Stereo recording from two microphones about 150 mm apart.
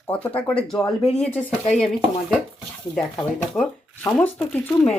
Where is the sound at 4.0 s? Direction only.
10° left (ahead or behind).